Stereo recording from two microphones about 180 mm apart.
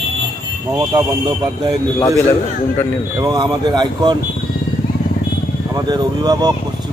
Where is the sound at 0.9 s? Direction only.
25° right (ahead or behind).